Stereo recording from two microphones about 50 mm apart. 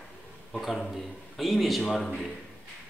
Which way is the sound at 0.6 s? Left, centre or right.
Centre.